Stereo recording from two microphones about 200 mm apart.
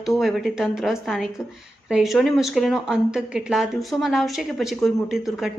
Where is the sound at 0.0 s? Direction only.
Centre (ahead or behind).